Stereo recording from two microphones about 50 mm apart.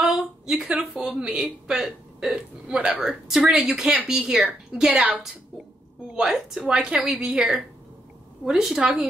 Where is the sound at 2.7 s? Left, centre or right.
Right.